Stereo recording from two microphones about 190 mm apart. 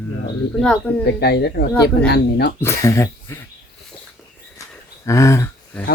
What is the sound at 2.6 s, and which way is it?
Speech, 15° left (ahead or behind).